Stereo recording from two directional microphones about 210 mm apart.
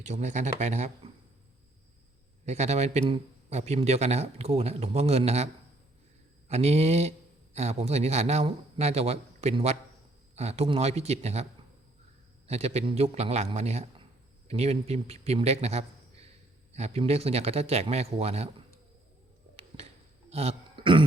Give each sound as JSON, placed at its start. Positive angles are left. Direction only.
{"t": 0.0, "sound": "speech", "side_deg": -35}
{"t": 2.5, "sound": "speech", "side_deg": -30}
{"t": 6.5, "sound": "speech", "side_deg": -30}
{"t": 12.5, "sound": "a man's voice", "side_deg": -30}
{"t": 19.5, "sound": "a sound", "side_deg": -30}
{"t": 20.3, "sound": "burping", "side_deg": -30}